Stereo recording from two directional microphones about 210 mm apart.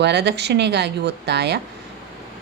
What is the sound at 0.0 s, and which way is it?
Speech, 50° right (ahead or behind).